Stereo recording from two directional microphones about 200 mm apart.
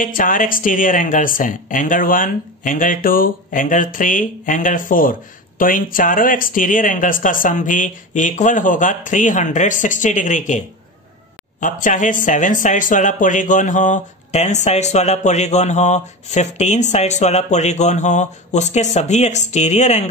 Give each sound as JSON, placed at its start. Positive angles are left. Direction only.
{"t": 0.0, "sound": "speech", "side_deg": 45}
{"t": 11.6, "sound": "speech", "side_deg": 40}